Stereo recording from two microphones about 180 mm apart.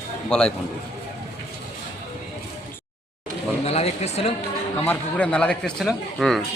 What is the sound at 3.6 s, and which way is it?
Speech, 35° left (ahead or behind).